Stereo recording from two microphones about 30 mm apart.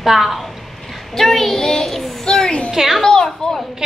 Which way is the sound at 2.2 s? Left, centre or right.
Left.